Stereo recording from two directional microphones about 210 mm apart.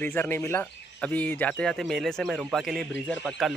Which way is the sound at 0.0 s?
10° left (ahead or behind).